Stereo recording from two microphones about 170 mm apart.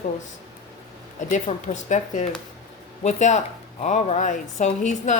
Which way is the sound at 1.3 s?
45° left (ahead or behind).